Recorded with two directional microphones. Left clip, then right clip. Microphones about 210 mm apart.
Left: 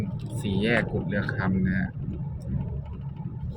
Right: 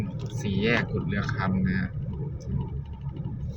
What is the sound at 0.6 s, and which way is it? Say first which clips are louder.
Speech: even; 5° right (ahead or behind).